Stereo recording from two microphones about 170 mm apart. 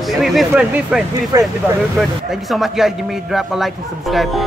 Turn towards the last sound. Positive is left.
turn(degrees=0)  # may be behind; listen again after turning